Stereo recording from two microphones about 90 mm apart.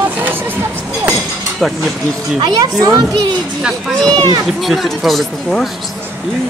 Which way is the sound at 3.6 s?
10° right (ahead or behind).